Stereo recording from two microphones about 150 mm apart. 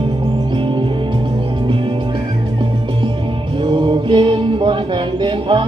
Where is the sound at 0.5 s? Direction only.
35° right (ahead or behind).